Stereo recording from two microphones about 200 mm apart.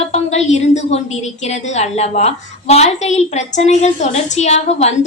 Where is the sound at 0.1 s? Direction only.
35° left (ahead or behind).